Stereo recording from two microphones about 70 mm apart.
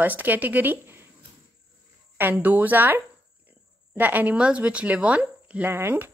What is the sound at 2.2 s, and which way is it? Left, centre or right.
Speech, right.